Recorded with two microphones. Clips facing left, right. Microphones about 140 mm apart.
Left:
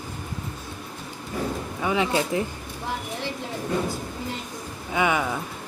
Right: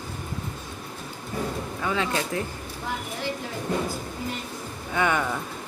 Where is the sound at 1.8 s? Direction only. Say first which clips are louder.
Left 4 dB; 15° left (ahead or behind).